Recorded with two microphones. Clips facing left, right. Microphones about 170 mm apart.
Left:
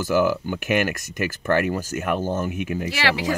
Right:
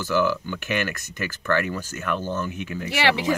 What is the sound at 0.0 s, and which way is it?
Speech, 50° left (ahead or behind).